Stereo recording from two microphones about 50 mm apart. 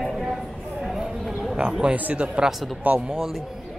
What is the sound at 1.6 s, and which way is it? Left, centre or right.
Speech, centre.